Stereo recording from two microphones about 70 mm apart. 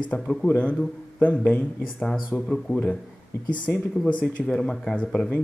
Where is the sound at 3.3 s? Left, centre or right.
Left.